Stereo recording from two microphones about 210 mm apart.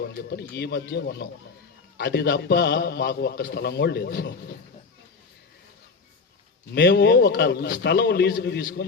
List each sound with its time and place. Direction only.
0.0 s a man's voice: 50° left (ahead or behind)
6.7 s a man's voice: 55° left (ahead or behind)